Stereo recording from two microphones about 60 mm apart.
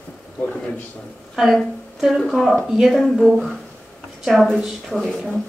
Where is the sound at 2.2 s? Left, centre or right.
Centre.